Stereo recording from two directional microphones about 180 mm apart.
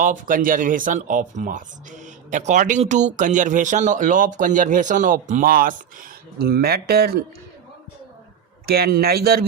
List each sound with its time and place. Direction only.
0.0 s speech: 50° right (ahead or behind)
8.6 s speech: 60° right (ahead or behind)